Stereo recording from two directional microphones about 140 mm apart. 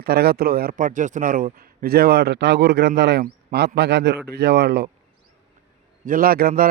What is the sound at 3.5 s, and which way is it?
Speech, 90° right.